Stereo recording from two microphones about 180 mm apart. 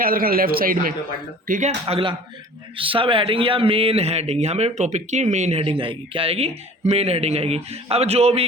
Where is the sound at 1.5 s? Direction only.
40° right (ahead or behind).